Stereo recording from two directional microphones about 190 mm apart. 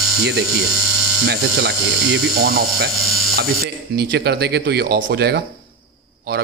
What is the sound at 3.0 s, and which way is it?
Electric shaver, centre (ahead or behind).